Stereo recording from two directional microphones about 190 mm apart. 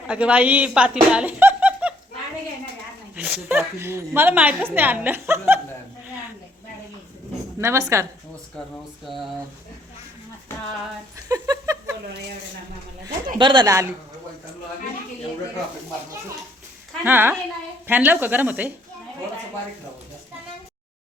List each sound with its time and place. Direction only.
0.1 s speech: 5° right (ahead or behind)
3.2 s a woman's voice: 5° right (ahead or behind)
7.6 s a woman's voice: 15° right (ahead or behind)
10.5 s a sound: 15° left (ahead or behind)
11.3 s a sound: 20° right (ahead or behind)
13.4 s speech: 25° right (ahead or behind)
17.0 s a woman's voice: 10° right (ahead or behind)